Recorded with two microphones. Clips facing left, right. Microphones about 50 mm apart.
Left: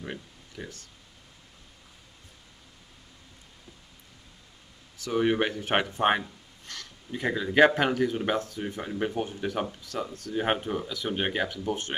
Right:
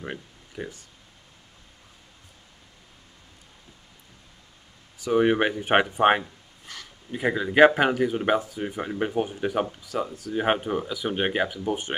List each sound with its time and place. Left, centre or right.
0.0 s speech: centre
4.9 s speech: centre